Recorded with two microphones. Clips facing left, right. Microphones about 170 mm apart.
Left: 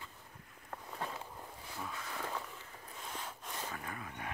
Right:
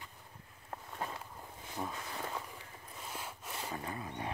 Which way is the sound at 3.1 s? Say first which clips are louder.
Right 1 dB; 5° right (ahead or behind).